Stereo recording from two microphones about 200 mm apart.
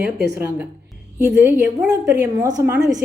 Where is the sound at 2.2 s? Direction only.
15° right (ahead or behind).